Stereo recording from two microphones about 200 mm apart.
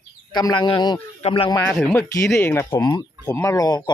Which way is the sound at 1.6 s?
15° left (ahead or behind).